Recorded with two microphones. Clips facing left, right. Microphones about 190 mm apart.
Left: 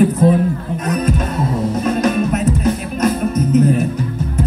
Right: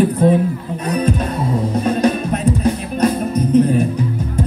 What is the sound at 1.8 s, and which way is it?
Music, 35° right (ahead or behind).